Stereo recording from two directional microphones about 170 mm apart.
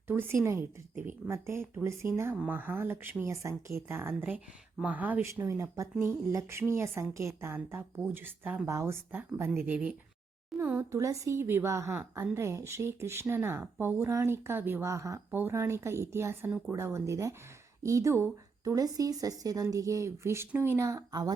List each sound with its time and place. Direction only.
0.1 s a woman's voice: 15° right (ahead or behind)